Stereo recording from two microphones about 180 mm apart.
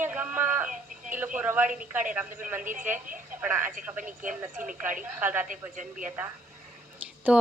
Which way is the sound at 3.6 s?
45° right (ahead or behind).